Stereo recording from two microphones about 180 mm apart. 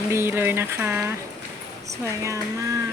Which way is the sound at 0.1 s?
15° right (ahead or behind).